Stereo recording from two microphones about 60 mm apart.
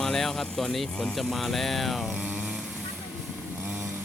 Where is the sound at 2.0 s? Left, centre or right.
Right.